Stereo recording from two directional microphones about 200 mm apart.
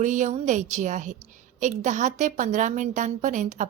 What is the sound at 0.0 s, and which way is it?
A woman's voice, 40° right (ahead or behind).